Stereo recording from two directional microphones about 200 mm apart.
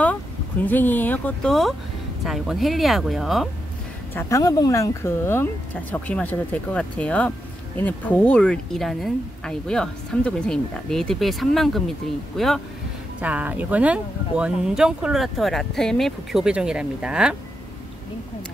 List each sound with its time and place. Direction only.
0.7 s speech: 10° left (ahead or behind)
4.1 s speech: 10° left (ahead or behind); by 17.4 s 5° right (ahead or behind)